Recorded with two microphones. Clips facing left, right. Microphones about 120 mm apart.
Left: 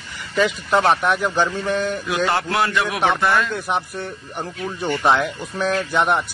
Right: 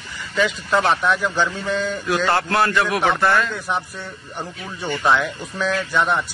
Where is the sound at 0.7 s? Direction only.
15° left (ahead or behind).